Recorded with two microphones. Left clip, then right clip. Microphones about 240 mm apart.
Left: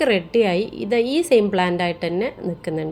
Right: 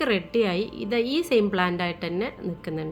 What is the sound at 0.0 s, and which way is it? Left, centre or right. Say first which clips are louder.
A woman's voice: left 6 dB; centre.